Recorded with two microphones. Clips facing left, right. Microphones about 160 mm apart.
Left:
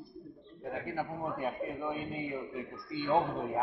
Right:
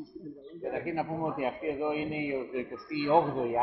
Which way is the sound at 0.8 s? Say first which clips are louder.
Right 4 dB; 20° right (ahead or behind).